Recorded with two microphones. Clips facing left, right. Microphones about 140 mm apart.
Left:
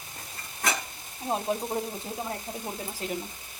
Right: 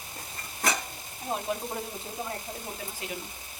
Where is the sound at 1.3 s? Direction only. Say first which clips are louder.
Left 3 dB; 25° left (ahead or behind).